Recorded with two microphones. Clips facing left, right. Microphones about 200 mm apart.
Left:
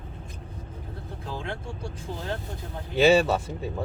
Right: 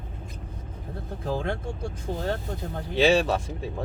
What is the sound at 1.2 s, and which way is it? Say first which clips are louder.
Speech: right 6 dB; 45° right (ahead or behind).